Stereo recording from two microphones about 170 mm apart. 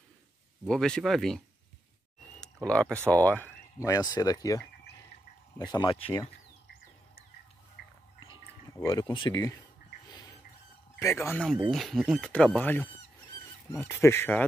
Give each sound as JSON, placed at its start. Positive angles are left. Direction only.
{"t": 0.7, "sound": "speech", "side_deg": 5}
{"t": 2.4, "sound": "a sound", "side_deg": 5}
{"t": 3.1, "sound": "speech", "side_deg": 10}
{"t": 8.8, "sound": "speech", "side_deg": 25}
{"t": 11.0, "sound": "speech", "side_deg": 15}
{"t": 11.7, "sound": "speech", "side_deg": 0}